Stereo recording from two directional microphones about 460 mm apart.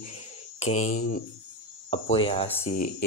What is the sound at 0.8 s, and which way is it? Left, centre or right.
A man's voice, centre.